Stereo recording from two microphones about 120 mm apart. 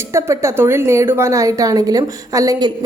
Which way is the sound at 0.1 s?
25° right (ahead or behind).